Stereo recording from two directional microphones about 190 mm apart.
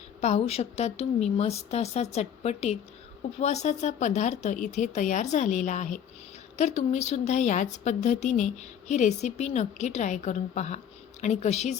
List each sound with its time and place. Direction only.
0.2 s speech: 35° left (ahead or behind)